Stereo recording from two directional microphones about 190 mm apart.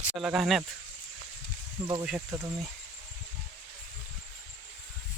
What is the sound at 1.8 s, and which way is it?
Speech, 25° right (ahead or behind).